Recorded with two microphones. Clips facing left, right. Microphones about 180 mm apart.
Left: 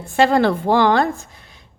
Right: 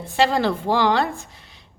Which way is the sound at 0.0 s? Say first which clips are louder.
Left 4 dB; 50° left (ahead or behind).